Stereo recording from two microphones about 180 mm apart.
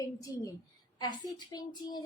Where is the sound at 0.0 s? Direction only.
20° left (ahead or behind).